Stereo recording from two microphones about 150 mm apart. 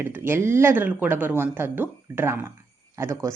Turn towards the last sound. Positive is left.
turn(degrees=-15)  # may be behind; listen again after turning